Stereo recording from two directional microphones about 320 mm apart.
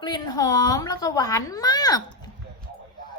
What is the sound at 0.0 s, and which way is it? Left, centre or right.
A woman's voice, centre.